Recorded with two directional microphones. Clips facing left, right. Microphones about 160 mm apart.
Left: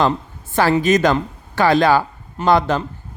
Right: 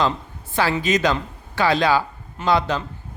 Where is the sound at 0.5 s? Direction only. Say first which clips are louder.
Left 5 dB; 45° left (ahead or behind).